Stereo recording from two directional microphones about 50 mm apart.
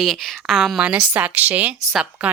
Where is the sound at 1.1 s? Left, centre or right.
Right.